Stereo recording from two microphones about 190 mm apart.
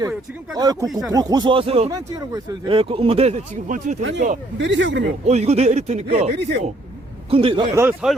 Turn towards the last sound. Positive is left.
turn(degrees=-10)  # may be behind; listen again after turning